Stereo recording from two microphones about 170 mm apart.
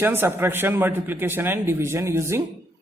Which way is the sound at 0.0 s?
15° right (ahead or behind).